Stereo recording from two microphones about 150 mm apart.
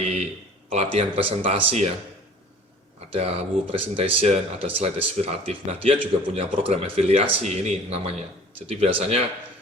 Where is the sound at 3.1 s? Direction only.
45° right (ahead or behind).